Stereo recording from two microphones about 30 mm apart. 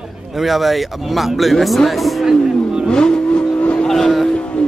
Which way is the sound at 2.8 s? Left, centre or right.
Left.